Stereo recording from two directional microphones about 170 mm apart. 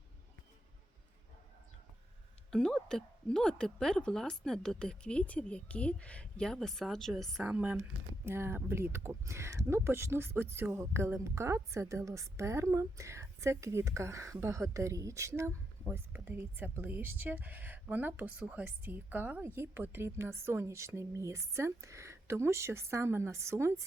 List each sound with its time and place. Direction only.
2.5 s a woman's voice: 5° left (ahead or behind); by 23.8 s 15° right (ahead or behind)